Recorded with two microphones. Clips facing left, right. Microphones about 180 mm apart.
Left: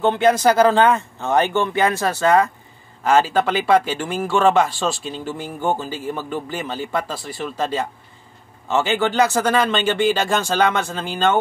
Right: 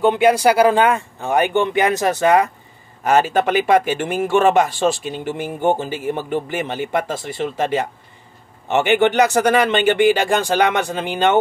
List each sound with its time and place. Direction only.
0.0 s speech: 15° right (ahead or behind)